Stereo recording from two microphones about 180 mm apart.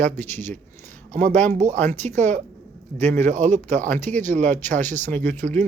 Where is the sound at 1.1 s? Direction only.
45° right (ahead or behind).